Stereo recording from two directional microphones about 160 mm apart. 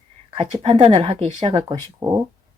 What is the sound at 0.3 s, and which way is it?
Speech, 35° right (ahead or behind).